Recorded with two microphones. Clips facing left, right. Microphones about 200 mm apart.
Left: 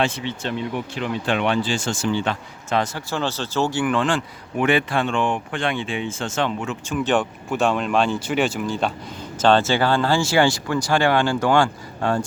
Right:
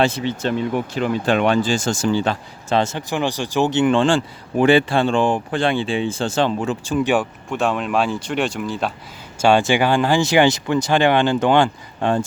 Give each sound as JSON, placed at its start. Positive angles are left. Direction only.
{"t": 0.0, "sound": "speech", "side_deg": -40}
{"t": 7.0, "sound": "speech", "side_deg": -10}
{"t": 9.4, "sound": "speech", "side_deg": -10}